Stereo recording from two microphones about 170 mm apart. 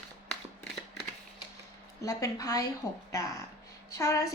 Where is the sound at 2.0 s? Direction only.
20° left (ahead or behind).